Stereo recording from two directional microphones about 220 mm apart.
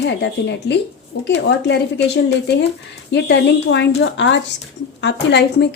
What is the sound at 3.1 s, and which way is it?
A woman's voice, 50° left (ahead or behind).